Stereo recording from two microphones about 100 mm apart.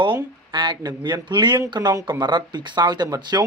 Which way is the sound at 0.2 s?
50° right (ahead or behind).